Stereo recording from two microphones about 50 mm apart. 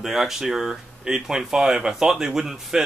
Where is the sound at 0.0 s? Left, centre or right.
Centre.